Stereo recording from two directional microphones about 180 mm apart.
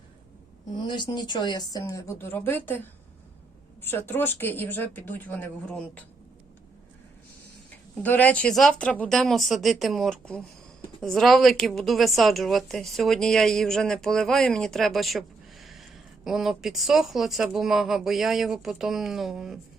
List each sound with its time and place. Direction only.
0.7 s speech: 25° left (ahead or behind); by 6.0 s 5° left (ahead or behind)
8.0 s a woman's voice: 10° left (ahead or behind)